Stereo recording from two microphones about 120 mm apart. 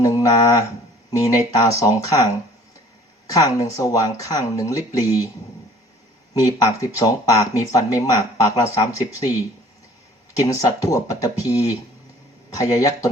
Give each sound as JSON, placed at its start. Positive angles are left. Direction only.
{"t": 0.0, "sound": "mantra", "side_deg": 30}
{"t": 1.1, "sound": "speech", "side_deg": 30}
{"t": 3.3, "sound": "speech", "side_deg": 30}
{"t": 6.3, "sound": "speech", "side_deg": 30}